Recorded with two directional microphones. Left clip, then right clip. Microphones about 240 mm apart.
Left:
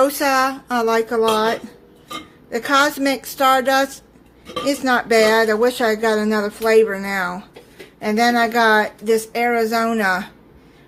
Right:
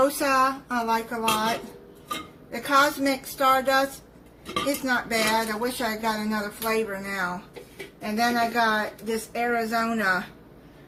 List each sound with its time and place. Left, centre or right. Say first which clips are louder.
0.0 s speech: left 5 dB; left
2.5 s speech: left 5 dB; left
4.9 s speech: left 11 dB; left